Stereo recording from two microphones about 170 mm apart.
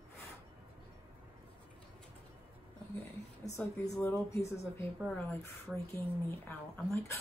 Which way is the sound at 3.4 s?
20° left (ahead or behind).